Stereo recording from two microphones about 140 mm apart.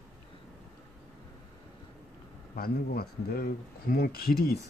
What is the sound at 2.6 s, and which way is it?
Speech, 90° left.